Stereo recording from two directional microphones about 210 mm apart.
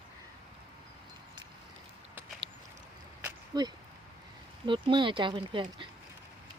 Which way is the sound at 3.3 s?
20° right (ahead or behind).